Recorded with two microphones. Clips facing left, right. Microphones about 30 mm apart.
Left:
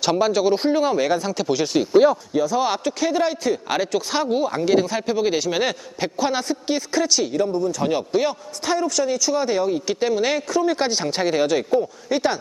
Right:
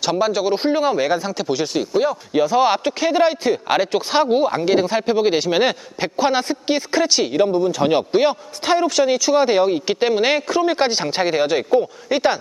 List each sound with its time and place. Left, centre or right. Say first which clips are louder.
0.0 s speech: even; centre
2.3 s a man's voice: right 4 dB; right